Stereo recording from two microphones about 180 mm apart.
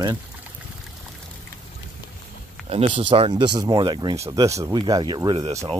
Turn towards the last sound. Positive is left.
turn(degrees=-30)  # may be behind; listen again after turning